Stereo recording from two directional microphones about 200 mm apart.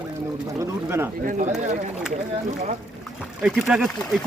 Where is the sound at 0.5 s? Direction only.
10° right (ahead or behind).